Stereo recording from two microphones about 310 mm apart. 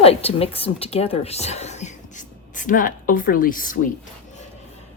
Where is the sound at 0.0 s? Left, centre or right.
Centre.